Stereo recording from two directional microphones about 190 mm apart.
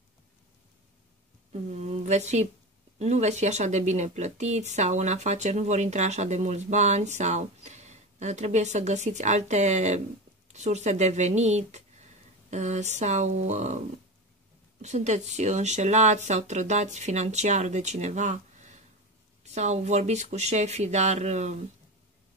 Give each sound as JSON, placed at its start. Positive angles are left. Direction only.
{"t": 1.5, "sound": "speech", "side_deg": -35}
{"t": 14.8, "sound": "speech", "side_deg": -35}